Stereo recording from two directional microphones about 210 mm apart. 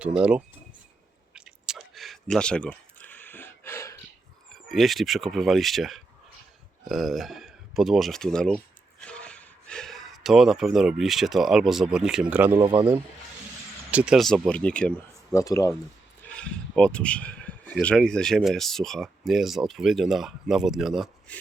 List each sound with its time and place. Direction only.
0.0 s speech: 5° right (ahead or behind)
1.3 s chewing: 5° right (ahead or behind); by 3.9 s 10° left (ahead or behind)
4.7 s speech: centre (ahead or behind)
12.7 s speech: 20° right (ahead or behind)
13.9 s speech: 5° right (ahead or behind); by 15.7 s 15° left (ahead or behind)
16.3 s speech: 5° left (ahead or behind)